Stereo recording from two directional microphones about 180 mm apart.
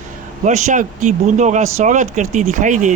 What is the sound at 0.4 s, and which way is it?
Speech, 40° right (ahead or behind).